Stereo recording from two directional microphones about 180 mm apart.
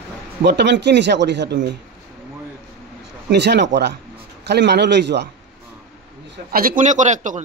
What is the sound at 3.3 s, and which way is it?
A man's voice, 70° right (ahead or behind).